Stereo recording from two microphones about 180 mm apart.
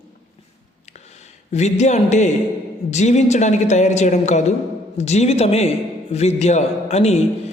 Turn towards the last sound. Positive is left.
turn(degrees=35)  # may be behind; listen again after turning